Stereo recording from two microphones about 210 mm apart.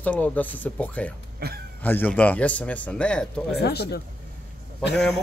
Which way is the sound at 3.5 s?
50° left (ahead or behind).